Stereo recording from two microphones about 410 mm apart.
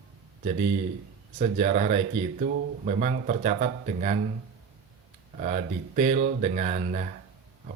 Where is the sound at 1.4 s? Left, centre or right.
Centre.